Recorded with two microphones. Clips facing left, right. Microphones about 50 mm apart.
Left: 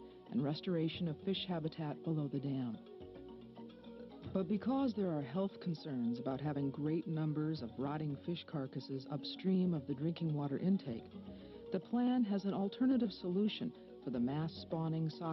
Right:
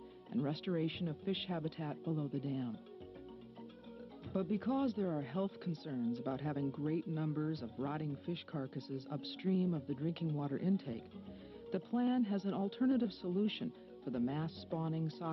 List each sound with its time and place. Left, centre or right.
0.3 s speech: right
4.3 s speech: right